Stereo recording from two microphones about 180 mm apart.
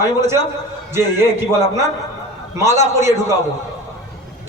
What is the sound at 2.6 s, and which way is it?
Speech, 15° right (ahead or behind).